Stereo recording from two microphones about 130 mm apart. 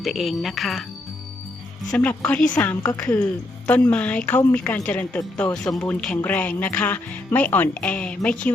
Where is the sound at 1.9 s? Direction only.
10° left (ahead or behind).